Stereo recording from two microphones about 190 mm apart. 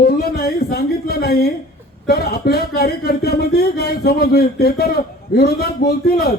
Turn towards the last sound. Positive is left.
turn(degrees=55)  # may be behind; listen again after turning